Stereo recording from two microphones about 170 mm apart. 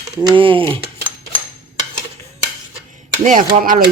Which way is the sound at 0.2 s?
30° right (ahead or behind).